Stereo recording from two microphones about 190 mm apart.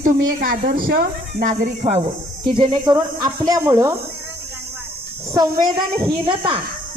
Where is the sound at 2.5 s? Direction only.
25° right (ahead or behind).